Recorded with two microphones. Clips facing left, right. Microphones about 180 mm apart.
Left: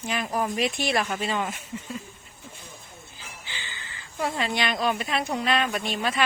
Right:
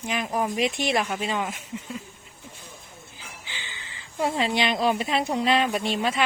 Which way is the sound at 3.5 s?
15° right (ahead or behind).